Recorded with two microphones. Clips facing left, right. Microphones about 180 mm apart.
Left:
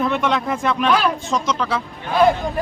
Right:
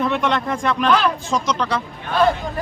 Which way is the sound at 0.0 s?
Centre (ahead or behind).